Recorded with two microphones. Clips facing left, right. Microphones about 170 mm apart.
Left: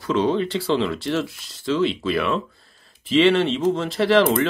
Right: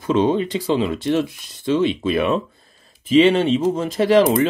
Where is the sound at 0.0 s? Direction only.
20° right (ahead or behind).